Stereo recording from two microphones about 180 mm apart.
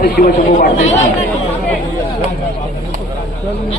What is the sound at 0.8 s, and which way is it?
Speech, 40° left (ahead or behind).